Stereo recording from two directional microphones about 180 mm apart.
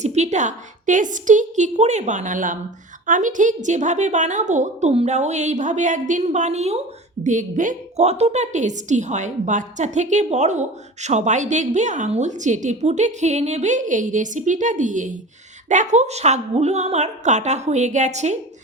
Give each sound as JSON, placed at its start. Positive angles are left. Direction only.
{"t": 0.0, "sound": "a woman's voice", "side_deg": -40}